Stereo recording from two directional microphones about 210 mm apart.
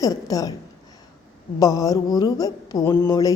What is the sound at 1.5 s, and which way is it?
A woman's voice, 15° left (ahead or behind).